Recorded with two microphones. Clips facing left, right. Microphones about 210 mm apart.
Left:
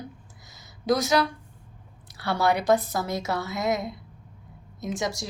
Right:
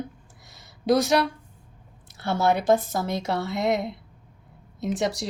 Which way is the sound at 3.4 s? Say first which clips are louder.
Right 2 dB; 60° right (ahead or behind).